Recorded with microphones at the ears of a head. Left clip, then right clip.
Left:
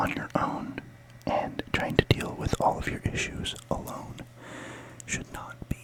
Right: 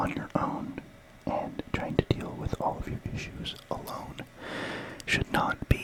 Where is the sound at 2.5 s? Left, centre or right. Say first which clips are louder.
Left 6 dB; left.